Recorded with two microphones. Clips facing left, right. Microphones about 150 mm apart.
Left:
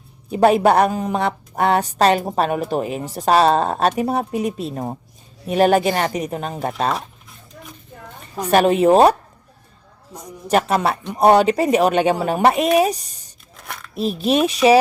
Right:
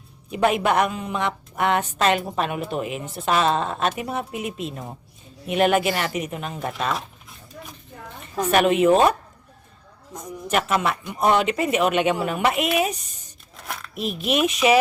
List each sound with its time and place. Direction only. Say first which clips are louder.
0.3 s a woman's voice: left 6 dB; 35° left (ahead or behind)
8.4 s a woman's voice: left 3 dB; 35° left (ahead or behind)
10.1 s speech: right 1 dB; 10° left (ahead or behind)
10.5 s a woman's voice: left 5 dB; 35° left (ahead or behind)
13.6 s a sound: right 1 dB; centre (ahead or behind)
13.9 s a woman's voice: left 5 dB; 30° left (ahead or behind)